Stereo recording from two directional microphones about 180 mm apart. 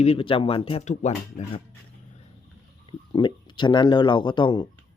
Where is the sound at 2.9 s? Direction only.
25° left (ahead or behind).